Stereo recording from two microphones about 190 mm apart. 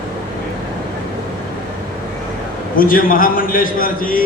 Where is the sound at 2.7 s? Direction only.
45° left (ahead or behind).